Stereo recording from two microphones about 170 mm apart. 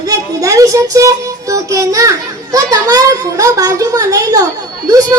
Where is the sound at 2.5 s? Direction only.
20° right (ahead or behind).